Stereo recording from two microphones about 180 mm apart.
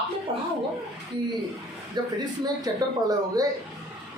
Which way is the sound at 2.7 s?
20° right (ahead or behind).